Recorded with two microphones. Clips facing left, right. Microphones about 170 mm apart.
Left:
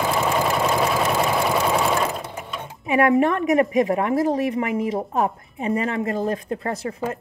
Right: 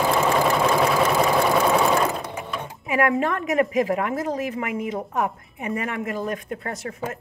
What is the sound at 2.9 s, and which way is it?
A woman's voice, 25° left (ahead or behind).